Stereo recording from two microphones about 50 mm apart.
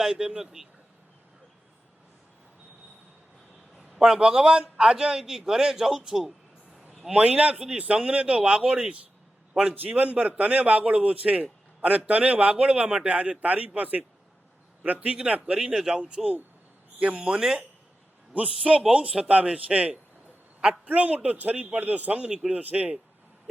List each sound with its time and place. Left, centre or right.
0.0 s speech: centre
3.8 s a man's voice: centre
7.3 s a man's voice: right
13.4 s a man's voice: right
15.5 s a man's voice: centre; by 23.0 s right